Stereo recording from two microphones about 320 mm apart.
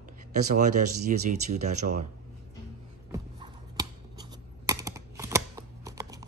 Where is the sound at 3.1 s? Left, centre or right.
Centre.